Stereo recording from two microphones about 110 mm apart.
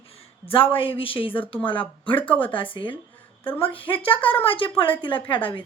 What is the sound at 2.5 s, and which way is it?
A woman's voice, 50° left (ahead or behind).